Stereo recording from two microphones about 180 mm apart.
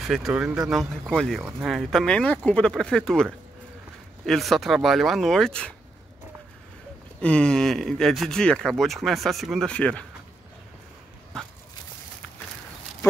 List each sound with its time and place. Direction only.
0.0 s speech: centre (ahead or behind)
4.3 s speech: centre (ahead or behind)
7.2 s speech: 5° left (ahead or behind)